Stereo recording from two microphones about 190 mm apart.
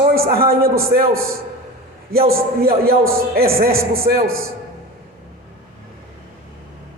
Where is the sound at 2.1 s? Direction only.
50° right (ahead or behind).